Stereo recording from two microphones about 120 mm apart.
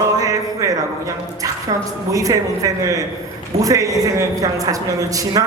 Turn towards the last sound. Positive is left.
turn(degrees=-30)  # may be behind; listen again after turning